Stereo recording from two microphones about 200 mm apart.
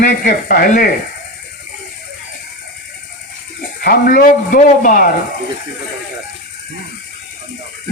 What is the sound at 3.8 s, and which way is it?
A man's voice, 45° left (ahead or behind).